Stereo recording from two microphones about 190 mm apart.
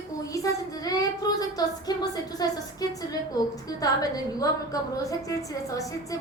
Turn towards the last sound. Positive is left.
turn(degrees=15)  # may be behind; listen again after turning